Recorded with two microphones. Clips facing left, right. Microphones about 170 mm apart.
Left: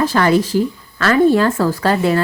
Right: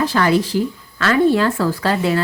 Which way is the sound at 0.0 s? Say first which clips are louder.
Left 2 dB; 45° left (ahead or behind).